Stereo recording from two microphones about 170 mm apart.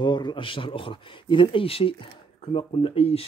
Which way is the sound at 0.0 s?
25° left (ahead or behind).